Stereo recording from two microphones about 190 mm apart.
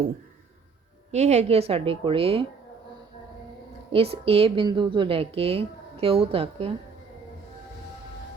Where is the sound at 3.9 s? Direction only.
30° right (ahead or behind).